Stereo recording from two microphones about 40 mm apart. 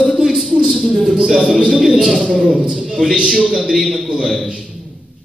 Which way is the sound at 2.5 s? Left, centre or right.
Right.